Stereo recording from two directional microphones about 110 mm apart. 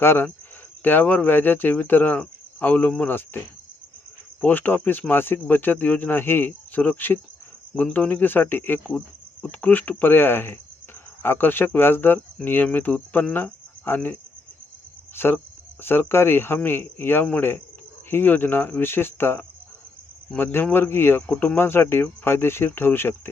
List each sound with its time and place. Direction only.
0.0 s speech: 20° left (ahead or behind)